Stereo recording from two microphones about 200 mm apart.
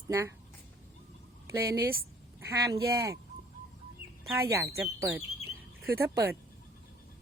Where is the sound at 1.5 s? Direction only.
15° right (ahead or behind).